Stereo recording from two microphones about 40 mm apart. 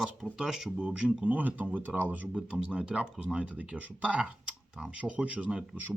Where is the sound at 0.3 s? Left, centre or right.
Centre.